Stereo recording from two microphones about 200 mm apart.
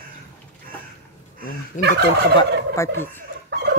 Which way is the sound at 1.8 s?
40° left (ahead or behind).